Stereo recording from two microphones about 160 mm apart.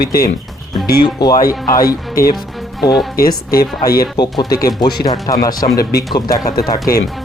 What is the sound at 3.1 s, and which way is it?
Speech, 65° left (ahead or behind).